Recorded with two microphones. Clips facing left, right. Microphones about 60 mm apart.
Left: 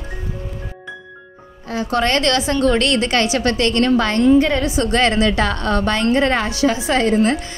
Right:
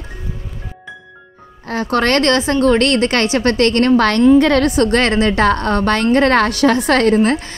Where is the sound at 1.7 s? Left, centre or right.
Right.